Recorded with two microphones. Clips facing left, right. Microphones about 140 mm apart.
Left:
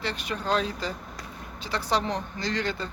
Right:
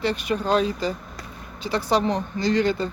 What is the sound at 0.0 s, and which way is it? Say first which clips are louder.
Speech: right 7 dB; 10° right (ahead or behind).